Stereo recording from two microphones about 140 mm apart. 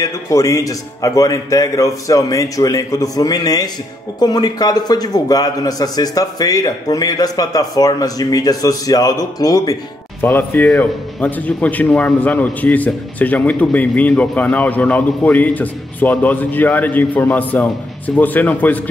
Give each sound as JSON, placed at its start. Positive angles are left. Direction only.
{"t": 0.0, "sound": "a man's voice", "side_deg": 20}
{"t": 10.2, "sound": "a man's voice", "side_deg": 15}